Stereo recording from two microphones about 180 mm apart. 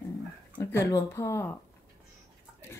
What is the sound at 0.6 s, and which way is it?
Speech, 15° left (ahead or behind).